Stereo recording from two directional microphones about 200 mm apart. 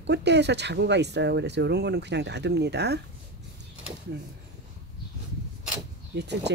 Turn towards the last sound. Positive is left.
turn(degrees=-60)  # may be behind; listen again after turning